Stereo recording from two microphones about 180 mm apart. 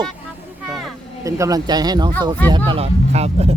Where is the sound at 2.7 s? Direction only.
35° right (ahead or behind).